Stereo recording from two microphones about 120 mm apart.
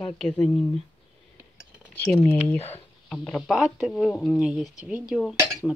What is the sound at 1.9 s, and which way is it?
Speech, 15° left (ahead or behind).